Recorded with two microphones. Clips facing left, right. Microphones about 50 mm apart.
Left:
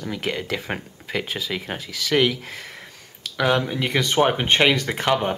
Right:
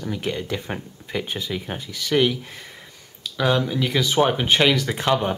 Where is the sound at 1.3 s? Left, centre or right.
Left.